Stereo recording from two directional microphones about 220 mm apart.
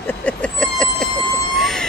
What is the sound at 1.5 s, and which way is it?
Vehicle, centre (ahead or behind).